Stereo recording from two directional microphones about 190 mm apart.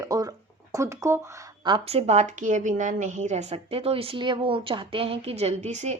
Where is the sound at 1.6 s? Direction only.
30° right (ahead or behind).